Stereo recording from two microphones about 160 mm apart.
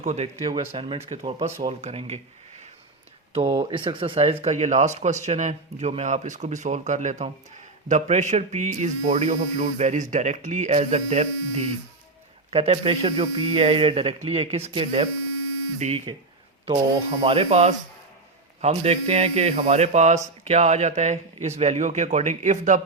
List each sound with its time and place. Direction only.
0.0 s speech: 45° right (ahead or behind)
0.4 s speech: 30° right (ahead or behind)
3.3 s speech: 35° right (ahead or behind)